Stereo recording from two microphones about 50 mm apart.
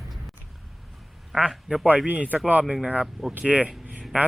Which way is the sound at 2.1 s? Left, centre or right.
Right.